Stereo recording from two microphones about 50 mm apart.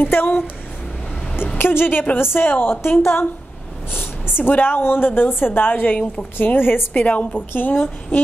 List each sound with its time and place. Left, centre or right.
0.0 s a woman's voice: left
1.6 s a woman's voice: left
4.4 s a woman's voice: left